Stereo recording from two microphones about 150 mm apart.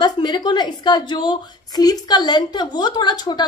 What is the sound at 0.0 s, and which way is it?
A woman's voice, 30° left (ahead or behind).